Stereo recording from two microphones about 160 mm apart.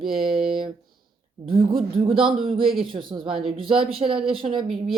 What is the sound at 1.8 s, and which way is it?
Speech, 35° right (ahead or behind).